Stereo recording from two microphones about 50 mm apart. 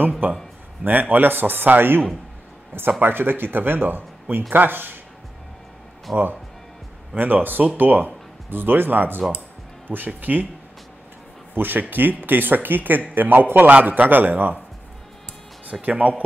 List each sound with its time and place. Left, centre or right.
0.2 s speech: right
6.1 s speech: centre
7.2 s speech: right
11.5 s speech: right
15.8 s speech: right